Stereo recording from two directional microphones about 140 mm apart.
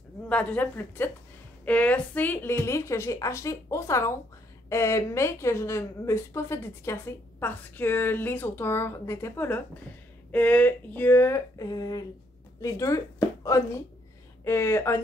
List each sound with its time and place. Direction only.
0.3 s a woman's voice: 10° left (ahead or behind)